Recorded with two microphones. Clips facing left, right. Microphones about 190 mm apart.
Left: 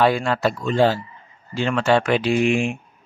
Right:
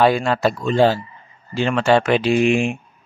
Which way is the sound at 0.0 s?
20° right (ahead or behind).